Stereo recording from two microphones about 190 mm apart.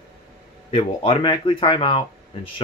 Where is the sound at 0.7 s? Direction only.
30° left (ahead or behind).